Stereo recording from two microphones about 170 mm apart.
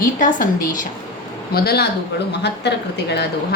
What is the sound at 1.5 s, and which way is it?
Speech, 70° left (ahead or behind).